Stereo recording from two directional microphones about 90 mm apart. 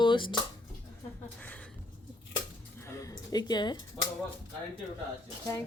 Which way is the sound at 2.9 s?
35° left (ahead or behind).